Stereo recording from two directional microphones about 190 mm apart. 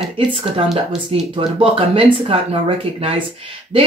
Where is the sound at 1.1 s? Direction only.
30° right (ahead or behind).